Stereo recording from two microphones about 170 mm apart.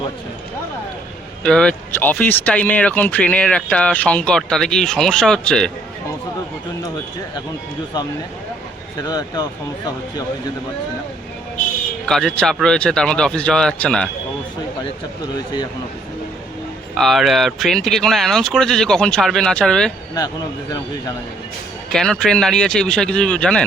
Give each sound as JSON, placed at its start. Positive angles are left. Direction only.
{"t": 1.5, "sound": "speech", "side_deg": 5}
{"t": 9.0, "sound": "speech", "side_deg": 25}
{"t": 12.0, "sound": "speech", "side_deg": 5}
{"t": 16.9, "sound": "speech", "side_deg": 0}
{"t": 21.9, "sound": "speech", "side_deg": 5}